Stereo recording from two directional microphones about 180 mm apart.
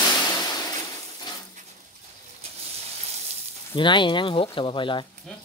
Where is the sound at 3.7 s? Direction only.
25° left (ahead or behind).